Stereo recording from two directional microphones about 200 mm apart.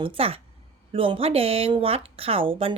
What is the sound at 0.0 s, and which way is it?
Speech, 25° right (ahead or behind).